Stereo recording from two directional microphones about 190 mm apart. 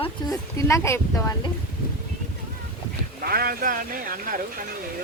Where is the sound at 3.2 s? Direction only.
50° right (ahead or behind).